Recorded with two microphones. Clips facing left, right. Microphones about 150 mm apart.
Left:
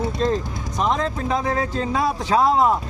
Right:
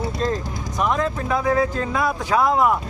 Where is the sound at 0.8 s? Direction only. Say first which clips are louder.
Even; 25° left (ahead or behind).